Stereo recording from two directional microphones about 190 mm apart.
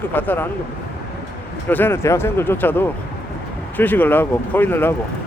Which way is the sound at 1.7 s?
10° left (ahead or behind).